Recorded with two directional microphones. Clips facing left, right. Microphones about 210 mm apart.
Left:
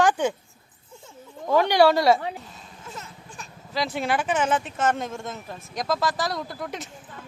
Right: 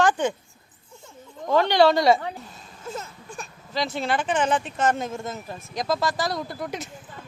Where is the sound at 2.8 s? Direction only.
40° right (ahead or behind).